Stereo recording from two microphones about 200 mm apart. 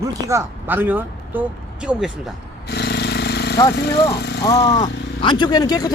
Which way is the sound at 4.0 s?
55° left (ahead or behind).